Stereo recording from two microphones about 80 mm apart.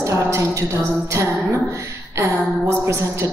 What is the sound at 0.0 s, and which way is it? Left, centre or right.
A woman's voice, right.